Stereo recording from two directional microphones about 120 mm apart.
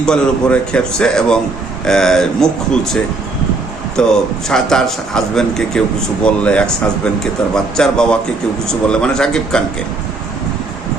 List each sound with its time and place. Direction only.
0.0 s a man's voice: 5° left (ahead or behind)
3.9 s a man's voice: 5° left (ahead or behind)